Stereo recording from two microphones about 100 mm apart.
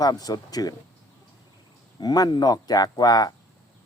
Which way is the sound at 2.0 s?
45° left (ahead or behind).